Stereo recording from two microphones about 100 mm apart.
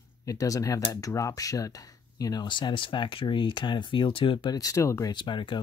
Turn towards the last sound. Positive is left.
turn(degrees=55)  # may be behind; listen again after turning